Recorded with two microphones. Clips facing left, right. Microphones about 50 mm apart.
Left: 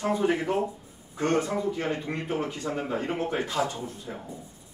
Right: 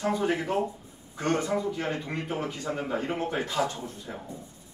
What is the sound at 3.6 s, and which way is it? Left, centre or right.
Speech, left.